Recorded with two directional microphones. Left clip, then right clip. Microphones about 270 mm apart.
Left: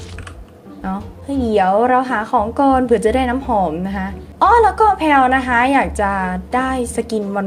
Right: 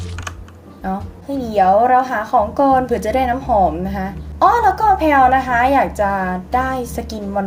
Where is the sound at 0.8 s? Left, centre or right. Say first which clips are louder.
Right 1 dB; left.